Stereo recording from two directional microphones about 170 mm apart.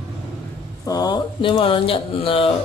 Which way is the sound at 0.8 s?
25° left (ahead or behind).